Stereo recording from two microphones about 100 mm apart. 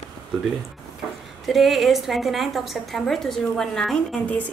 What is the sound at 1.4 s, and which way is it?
A woman's voice, centre (ahead or behind).